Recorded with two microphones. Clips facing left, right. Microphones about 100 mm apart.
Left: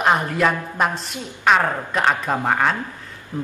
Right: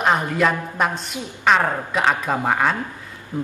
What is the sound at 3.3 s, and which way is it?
Insect, 15° right (ahead or behind).